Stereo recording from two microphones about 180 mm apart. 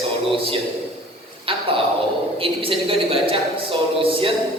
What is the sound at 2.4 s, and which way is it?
A woman's voice, 30° right (ahead or behind).